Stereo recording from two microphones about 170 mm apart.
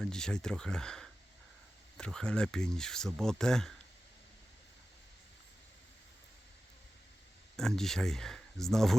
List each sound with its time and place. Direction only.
0.0 s speech: 5° left (ahead or behind)
7.5 s speech: 5° left (ahead or behind)